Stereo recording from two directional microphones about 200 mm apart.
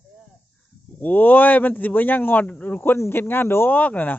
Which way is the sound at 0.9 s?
10° left (ahead or behind).